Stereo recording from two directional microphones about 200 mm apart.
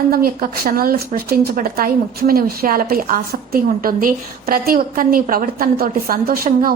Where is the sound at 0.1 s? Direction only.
50° right (ahead or behind).